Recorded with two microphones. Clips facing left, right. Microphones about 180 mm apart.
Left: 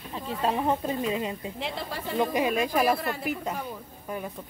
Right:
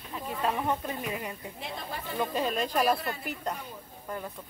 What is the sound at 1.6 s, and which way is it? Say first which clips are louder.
Speech: left 4 dB; 90° left.